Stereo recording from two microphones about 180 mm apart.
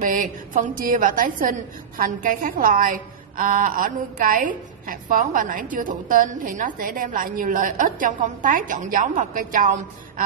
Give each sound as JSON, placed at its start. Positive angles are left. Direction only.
{"t": 0.0, "sound": "a woman's voice", "side_deg": -50}